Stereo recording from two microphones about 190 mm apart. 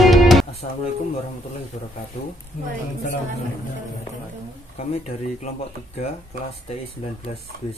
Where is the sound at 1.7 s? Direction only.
40° left (ahead or behind).